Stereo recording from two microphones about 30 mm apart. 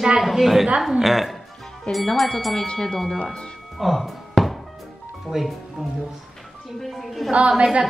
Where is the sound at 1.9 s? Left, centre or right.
Left.